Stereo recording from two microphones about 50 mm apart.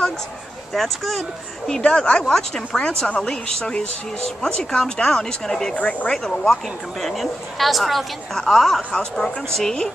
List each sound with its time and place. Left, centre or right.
0.7 s a woman's voice: centre
1.9 s speech: centre
5.8 s speech: left
6.0 s a woman's voice: centre